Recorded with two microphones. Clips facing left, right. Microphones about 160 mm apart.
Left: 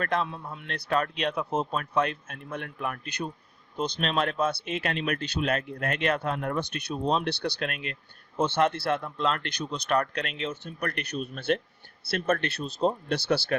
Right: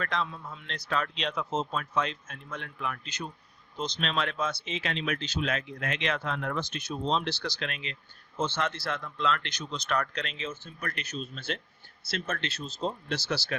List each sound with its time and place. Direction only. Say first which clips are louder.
0.0 s speech: left 4 dB; 55° left (ahead or behind)